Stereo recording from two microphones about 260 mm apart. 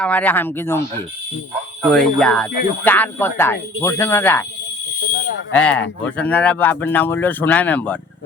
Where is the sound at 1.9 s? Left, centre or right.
Centre.